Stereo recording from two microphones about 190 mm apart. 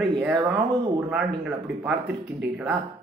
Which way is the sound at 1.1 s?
5° right (ahead or behind).